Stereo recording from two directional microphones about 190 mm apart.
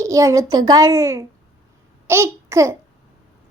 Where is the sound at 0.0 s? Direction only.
15° right (ahead or behind).